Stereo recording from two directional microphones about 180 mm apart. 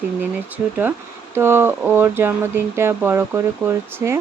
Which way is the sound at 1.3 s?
15° right (ahead or behind).